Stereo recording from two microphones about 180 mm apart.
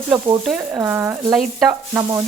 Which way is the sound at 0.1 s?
5° right (ahead or behind).